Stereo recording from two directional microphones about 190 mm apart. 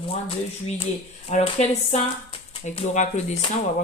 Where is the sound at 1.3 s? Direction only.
35° left (ahead or behind).